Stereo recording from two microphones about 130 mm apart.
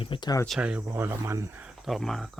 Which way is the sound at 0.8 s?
20° right (ahead or behind).